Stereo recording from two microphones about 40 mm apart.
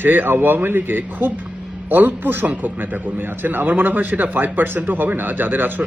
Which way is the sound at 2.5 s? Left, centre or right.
Right.